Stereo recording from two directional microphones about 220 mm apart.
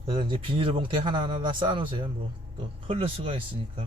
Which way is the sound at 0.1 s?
25° right (ahead or behind).